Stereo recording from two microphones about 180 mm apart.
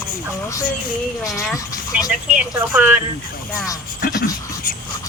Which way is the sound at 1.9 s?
5° right (ahead or behind).